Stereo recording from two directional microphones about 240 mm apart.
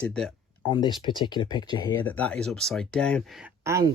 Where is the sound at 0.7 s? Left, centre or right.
Centre.